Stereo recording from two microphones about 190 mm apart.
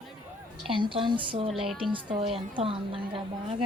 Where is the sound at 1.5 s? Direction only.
Centre (ahead or behind).